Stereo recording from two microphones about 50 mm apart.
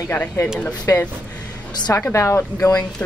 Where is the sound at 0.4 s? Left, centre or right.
Left.